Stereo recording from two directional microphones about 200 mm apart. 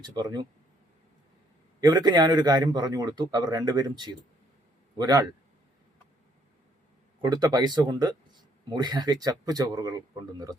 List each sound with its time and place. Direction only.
0.0 s speech: 20° right (ahead or behind)
1.8 s speech: 20° right (ahead or behind)
7.2 s speech: 20° right (ahead or behind)